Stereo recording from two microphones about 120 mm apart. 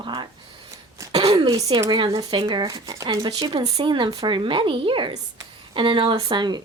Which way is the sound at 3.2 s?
45° right (ahead or behind).